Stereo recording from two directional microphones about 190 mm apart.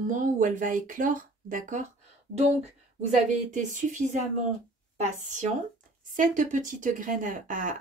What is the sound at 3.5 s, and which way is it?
A woman's voice, 40° right (ahead or behind).